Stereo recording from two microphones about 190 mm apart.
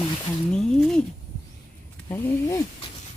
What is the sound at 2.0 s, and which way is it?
Speech, 15° left (ahead or behind).